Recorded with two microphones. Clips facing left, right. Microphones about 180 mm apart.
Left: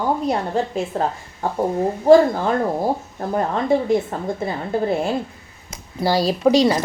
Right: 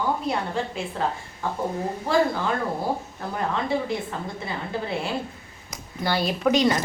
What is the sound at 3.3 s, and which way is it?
A woman's voice, 45° left (ahead or behind).